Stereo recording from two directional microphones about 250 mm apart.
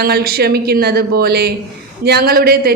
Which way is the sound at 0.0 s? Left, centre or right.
Right.